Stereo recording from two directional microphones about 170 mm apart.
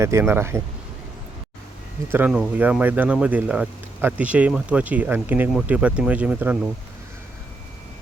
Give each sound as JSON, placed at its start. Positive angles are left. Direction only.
{"t": 0.0, "sound": "speech", "side_deg": -15}
{"t": 2.0, "sound": "speech", "side_deg": -10}